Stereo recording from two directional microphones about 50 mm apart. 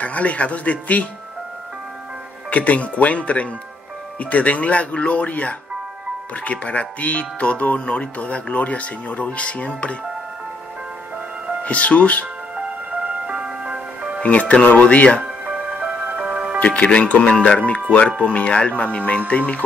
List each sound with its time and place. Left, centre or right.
0.0 s speech: left
2.5 s speech: left
11.6 s speech: left
12.5 s music: right
14.2 s speech: left
15.4 s music: right
16.5 s speech: left